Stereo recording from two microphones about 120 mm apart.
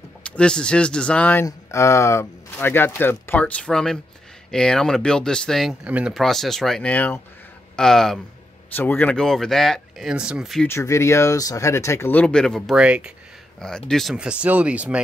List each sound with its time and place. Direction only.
0.2 s speech: 10° left (ahead or behind)
1.4 s speech: 25° left (ahead or behind); by 5.8 s centre (ahead or behind)
5.9 s speech: 10° right (ahead or behind)
6.1 s speech: centre (ahead or behind)
6.9 s speech: 15° left (ahead or behind)
8.7 s speech: 15° left (ahead or behind); by 10.6 s 5° right (ahead or behind)
10.7 s speech: 25° left (ahead or behind)
12.1 s speech: 10° left (ahead or behind); by 13.1 s 10° right (ahead or behind)
13.6 s speech: 5° left (ahead or behind)
14.1 s speech: 10° right (ahead or behind)